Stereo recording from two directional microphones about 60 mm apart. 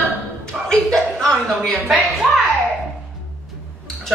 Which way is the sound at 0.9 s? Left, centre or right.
Centre.